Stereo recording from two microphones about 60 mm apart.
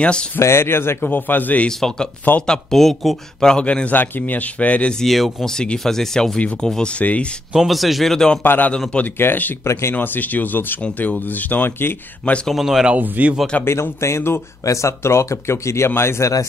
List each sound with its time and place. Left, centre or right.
0.4 s speech: left
1.8 s speech: centre
3.4 s a man's voice: centre
5.0 s speech: centre
7.0 s a man's voice: left
7.5 s speech: centre
8.4 s speech: left
9.7 s speech: left
9.9 s a man's voice: left
12.4 s speech: centre
12.9 s speech: right
13.7 s speech: left
14.6 s speech: left